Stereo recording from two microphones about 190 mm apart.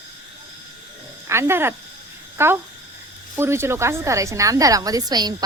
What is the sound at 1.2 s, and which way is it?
A woman's voice, 15° right (ahead or behind).